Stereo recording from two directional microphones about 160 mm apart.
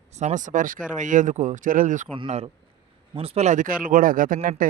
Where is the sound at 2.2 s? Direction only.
40° right (ahead or behind); by 4.6 s 60° right (ahead or behind).